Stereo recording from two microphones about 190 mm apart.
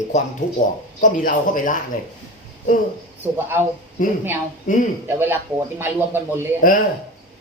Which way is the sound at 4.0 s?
45° left (ahead or behind).